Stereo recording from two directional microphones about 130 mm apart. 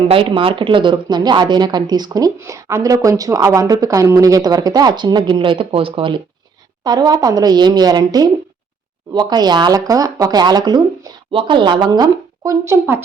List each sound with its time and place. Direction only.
0.1 s speech: 40° right (ahead or behind)
6.8 s speech: 30° right (ahead or behind)